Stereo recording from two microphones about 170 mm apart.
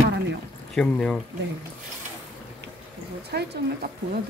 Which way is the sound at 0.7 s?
5° left (ahead or behind).